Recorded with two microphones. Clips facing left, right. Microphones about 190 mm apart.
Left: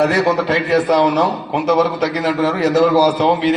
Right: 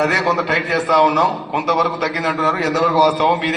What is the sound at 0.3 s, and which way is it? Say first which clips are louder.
A man's voice: left 4 dB; 30° left (ahead or behind).